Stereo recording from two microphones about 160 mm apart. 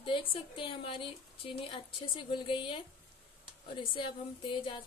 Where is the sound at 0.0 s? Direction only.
35° left (ahead or behind).